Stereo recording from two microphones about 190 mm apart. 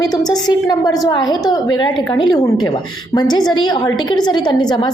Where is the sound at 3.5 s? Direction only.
20° left (ahead or behind).